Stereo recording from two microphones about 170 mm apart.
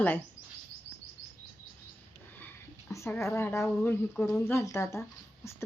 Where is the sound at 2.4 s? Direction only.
15° left (ahead or behind).